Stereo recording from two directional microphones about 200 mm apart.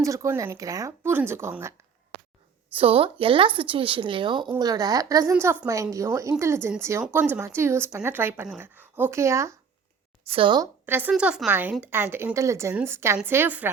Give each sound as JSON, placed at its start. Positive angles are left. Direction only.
{"t": 0.0, "sound": "speech", "side_deg": -15}
{"t": 2.7, "sound": "speech", "side_deg": -30}
{"t": 10.2, "sound": "speech", "side_deg": -25}
{"t": 10.8, "sound": "a woman's voice", "side_deg": -10}